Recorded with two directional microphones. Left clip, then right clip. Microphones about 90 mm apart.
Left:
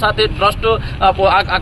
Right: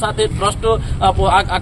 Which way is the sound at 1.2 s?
25° right (ahead or behind).